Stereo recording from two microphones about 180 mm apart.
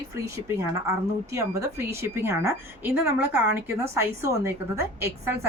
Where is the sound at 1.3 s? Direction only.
15° right (ahead or behind).